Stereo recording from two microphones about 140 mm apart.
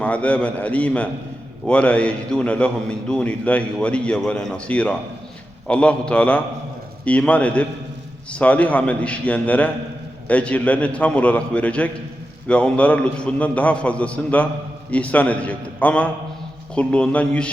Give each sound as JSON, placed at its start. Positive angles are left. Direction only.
{"t": 0.0, "sound": "a man's voice", "side_deg": 10}